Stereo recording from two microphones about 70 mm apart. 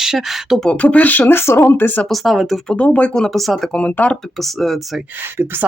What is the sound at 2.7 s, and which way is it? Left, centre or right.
Speech, centre.